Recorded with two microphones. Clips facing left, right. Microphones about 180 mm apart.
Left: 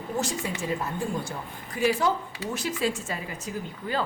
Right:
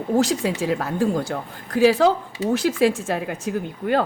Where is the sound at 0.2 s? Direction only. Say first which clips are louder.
Right 8 dB; 90° right.